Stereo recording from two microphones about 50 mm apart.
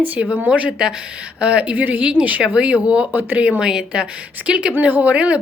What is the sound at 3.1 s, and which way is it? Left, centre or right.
Speech, right.